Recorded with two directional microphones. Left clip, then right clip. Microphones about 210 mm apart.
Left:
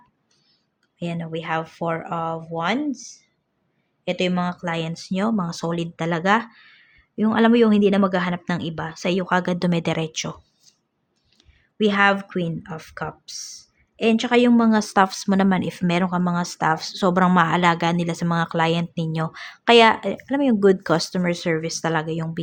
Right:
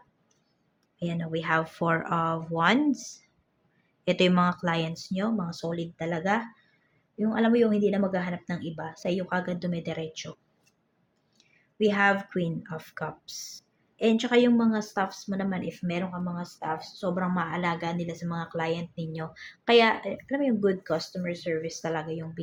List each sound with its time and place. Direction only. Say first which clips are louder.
0.9 s speech: left 3 dB; 15° left (ahead or behind); by 10.2 s 30° left (ahead or behind)
11.3 s speech: left 4 dB; 25° left (ahead or behind)